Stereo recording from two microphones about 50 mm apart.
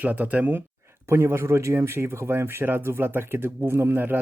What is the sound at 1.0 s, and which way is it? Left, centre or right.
Speech, right.